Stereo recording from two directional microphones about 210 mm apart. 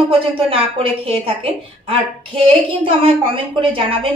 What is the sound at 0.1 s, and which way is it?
A woman's voice, 25° right (ahead or behind).